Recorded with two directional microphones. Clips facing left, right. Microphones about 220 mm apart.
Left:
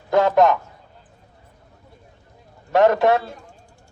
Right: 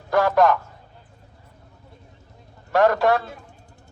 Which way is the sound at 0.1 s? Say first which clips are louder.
Left 2 dB; 20° left (ahead or behind).